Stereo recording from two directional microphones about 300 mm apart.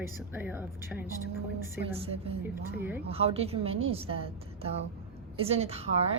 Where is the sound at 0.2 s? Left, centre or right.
Centre.